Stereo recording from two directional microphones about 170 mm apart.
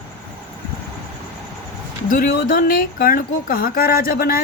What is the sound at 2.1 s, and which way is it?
Speech, 60° left (ahead or behind).